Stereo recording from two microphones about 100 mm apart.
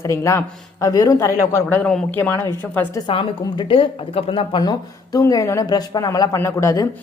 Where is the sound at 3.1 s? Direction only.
60° left (ahead or behind).